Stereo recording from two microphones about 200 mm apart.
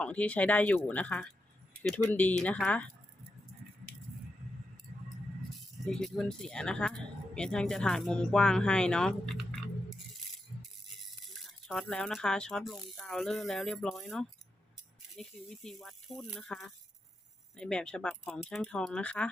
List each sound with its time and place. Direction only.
0.0 s speech: 5° left (ahead or behind)
5.5 s speech: centre (ahead or behind)
11.4 s speech: centre (ahead or behind)